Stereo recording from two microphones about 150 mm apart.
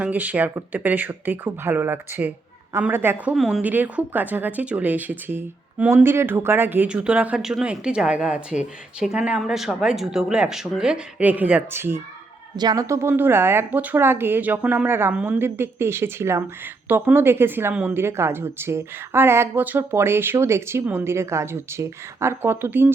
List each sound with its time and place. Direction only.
0.0 s speech: 10° right (ahead or behind)
3.3 s speech: centre (ahead or behind)
12.5 s speech: 25° right (ahead or behind)